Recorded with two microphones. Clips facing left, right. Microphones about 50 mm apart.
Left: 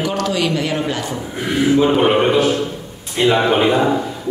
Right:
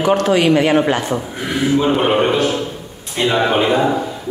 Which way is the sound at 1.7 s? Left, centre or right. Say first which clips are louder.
Even; centre.